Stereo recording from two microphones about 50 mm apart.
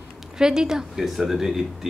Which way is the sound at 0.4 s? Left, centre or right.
Centre.